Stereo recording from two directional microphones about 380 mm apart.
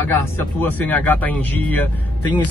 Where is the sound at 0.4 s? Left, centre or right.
Centre.